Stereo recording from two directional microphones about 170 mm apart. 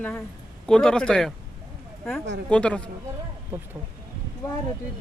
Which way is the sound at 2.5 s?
5° left (ahead or behind).